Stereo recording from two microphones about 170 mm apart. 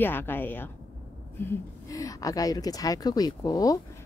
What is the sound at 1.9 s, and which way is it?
Speech, 20° left (ahead or behind).